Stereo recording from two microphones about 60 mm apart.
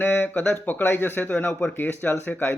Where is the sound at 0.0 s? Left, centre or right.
Left.